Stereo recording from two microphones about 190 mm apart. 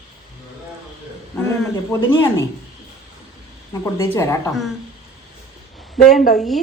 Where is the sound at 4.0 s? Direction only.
15° left (ahead or behind).